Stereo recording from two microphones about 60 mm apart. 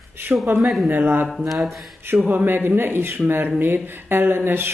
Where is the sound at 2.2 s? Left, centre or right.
Right.